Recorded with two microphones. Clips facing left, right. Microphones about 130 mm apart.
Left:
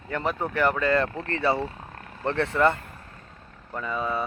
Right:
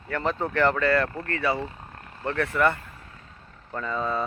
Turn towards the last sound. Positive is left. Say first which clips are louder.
# right 1 dB
turn(degrees=10)  # may be behind; listen again after turning